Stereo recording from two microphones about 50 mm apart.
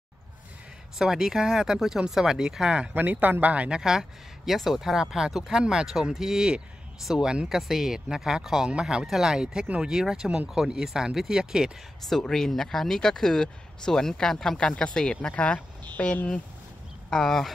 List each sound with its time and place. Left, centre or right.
0.9 s speech: centre
2.9 s speech: right
3.8 s speech: centre
9.0 s speech: centre
12.1 s speech: centre; by 16.2 s left
17.1 s speech: centre